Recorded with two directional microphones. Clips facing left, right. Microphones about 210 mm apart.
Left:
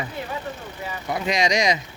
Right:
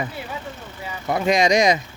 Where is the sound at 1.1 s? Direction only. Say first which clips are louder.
Right 5 dB; 50° right (ahead or behind).